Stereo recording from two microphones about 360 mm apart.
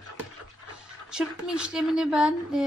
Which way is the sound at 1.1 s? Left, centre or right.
Centre.